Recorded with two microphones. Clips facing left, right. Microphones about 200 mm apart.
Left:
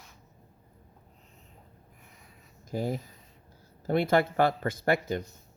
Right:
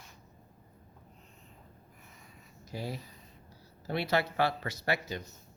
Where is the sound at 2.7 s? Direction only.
50° left (ahead or behind).